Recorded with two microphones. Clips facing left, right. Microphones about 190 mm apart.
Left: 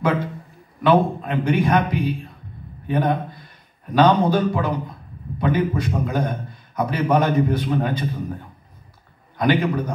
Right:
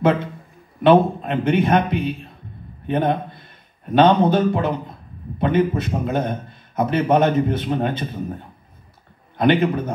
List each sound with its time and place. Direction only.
0.8 s a man's voice: 25° right (ahead or behind)
2.9 s a man's voice: 25° right (ahead or behind)